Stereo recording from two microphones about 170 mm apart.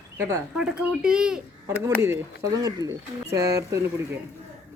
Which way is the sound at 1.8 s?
15° right (ahead or behind).